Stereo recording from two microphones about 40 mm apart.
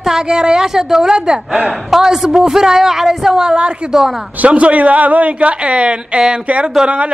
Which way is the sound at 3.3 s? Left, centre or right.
Right.